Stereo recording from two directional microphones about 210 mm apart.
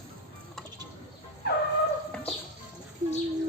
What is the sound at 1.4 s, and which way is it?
Shofar, 50° left (ahead or behind).